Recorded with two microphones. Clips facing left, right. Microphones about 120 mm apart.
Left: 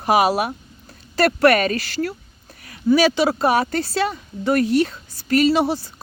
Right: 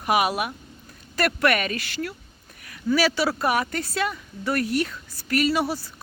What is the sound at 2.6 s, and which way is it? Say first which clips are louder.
A woman's voice: left 6 dB; 25° left (ahead or behind).